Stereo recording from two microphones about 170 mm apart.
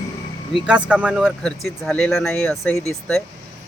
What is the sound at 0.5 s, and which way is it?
Speech, 5° right (ahead or behind).